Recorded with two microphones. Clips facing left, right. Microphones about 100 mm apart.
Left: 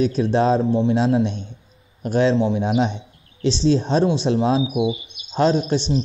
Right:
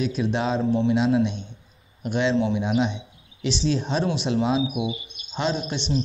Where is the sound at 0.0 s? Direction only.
35° left (ahead or behind).